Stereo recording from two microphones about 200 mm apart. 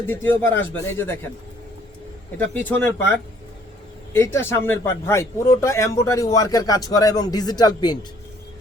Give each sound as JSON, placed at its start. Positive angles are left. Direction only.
{"t": 0.1, "sound": "speech", "side_deg": 10}
{"t": 2.4, "sound": "speech", "side_deg": 10}
{"t": 4.1, "sound": "speech", "side_deg": 10}